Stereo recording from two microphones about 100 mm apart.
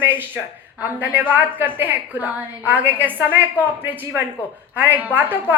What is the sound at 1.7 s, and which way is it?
A woman's voice, 20° right (ahead or behind).